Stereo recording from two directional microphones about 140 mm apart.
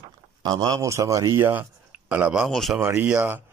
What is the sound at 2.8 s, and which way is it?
Speech, 15° right (ahead or behind).